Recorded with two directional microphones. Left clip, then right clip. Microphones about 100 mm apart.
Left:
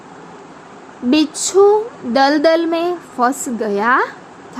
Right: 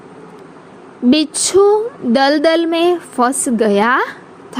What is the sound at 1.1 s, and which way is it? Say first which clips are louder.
Speech: right 1 dB; 75° right (ahead or behind).